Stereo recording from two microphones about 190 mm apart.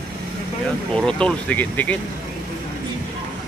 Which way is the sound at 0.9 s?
5° left (ahead or behind).